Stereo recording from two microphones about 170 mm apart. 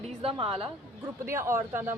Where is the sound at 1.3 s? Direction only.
15° right (ahead or behind).